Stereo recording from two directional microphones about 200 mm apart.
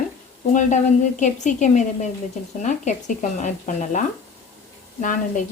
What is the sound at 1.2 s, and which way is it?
A woman's voice, 40° left (ahead or behind).